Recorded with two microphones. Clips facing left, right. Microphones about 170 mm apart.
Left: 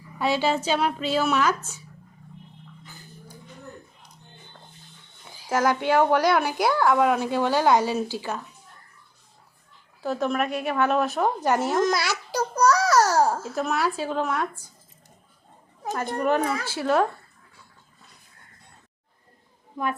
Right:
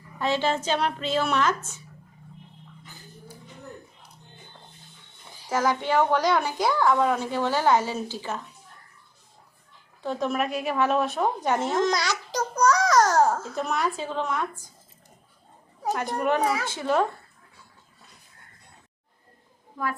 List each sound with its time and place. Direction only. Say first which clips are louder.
0.2 s a woman's voice: left 2 dB; 10° left (ahead or behind)
5.4 s a woman's voice: left 2 dB; 10° left (ahead or behind)
10.0 s a woman's voice: left 1 dB; 5° left (ahead or behind)
16.0 s a child's voice: left 3 dB; 10° right (ahead or behind)
19.7 s a woman's voice: left 2 dB; 20° left (ahead or behind)